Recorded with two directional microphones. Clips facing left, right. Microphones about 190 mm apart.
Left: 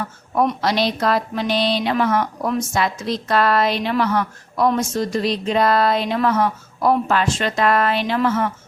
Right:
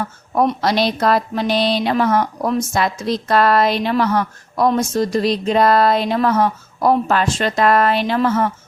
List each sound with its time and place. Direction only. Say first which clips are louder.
0.6 s a woman's voice: right 2 dB; 40° right (ahead or behind)